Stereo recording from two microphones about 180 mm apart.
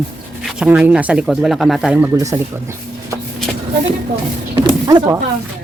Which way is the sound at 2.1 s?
15° right (ahead or behind).